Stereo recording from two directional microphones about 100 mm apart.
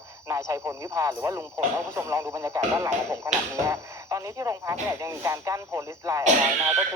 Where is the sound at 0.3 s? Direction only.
30° right (ahead or behind).